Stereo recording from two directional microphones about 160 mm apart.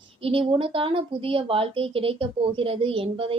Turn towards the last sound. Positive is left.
turn(degrees=-35)  # may be behind; listen again after turning